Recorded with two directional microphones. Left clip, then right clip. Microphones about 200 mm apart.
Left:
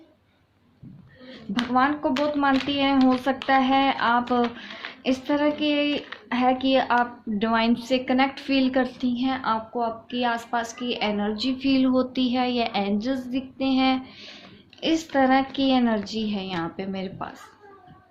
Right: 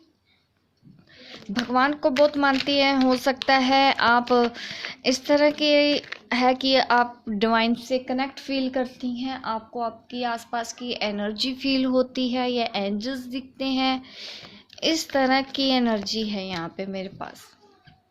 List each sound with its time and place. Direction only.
1.2 s a woman's voice: 50° right (ahead or behind)